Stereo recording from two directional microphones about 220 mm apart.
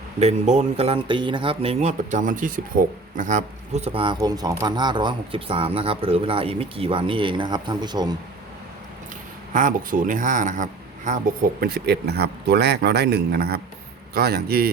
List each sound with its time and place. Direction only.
0.2 s speech: 30° right (ahead or behind)
9.5 s speech: 35° right (ahead or behind)
11.6 s speech: 45° right (ahead or behind)